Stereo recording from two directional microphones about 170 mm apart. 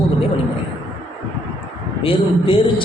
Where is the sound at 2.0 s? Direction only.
30° left (ahead or behind).